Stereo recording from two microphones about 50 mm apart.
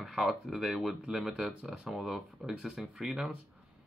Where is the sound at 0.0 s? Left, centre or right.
Centre.